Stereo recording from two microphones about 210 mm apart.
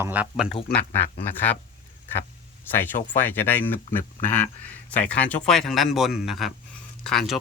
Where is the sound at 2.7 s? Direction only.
10° left (ahead or behind).